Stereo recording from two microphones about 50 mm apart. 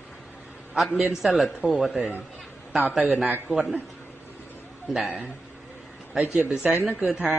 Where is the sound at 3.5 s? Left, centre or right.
Centre.